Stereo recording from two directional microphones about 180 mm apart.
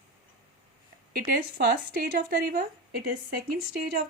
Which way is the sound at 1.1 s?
55° right (ahead or behind).